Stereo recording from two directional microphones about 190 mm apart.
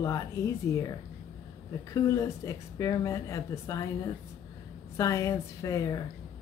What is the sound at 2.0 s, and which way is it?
Speech, 15° left (ahead or behind).